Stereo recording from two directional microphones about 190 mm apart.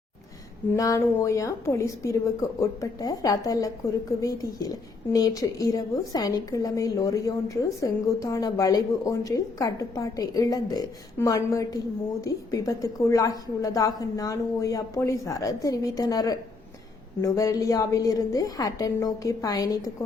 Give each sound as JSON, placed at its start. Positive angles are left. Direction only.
{"t": 0.8, "sound": "a woman's voice", "side_deg": 15}